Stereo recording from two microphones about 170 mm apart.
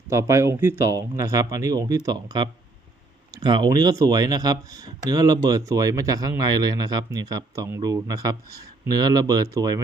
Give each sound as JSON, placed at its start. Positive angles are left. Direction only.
{"t": 0.1, "sound": "speech", "side_deg": -15}